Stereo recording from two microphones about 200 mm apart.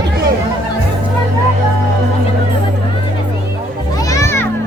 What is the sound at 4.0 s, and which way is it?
Children playing, 15° left (ahead or behind).